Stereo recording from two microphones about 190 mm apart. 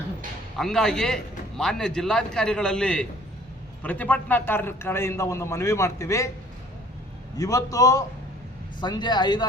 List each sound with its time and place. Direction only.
0.5 s a man's voice: centre (ahead or behind)
7.3 s a man's voice: 20° left (ahead or behind)